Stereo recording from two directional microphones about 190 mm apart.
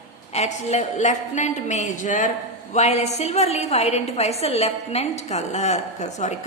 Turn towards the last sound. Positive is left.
turn(degrees=35)  # may be behind; listen again after turning